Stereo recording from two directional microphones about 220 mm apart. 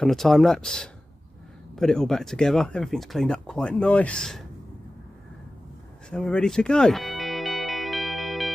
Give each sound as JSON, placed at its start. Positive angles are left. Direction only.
{"t": 0.0, "sound": "speech", "side_deg": 0}
{"t": 6.0, "sound": "music", "side_deg": 5}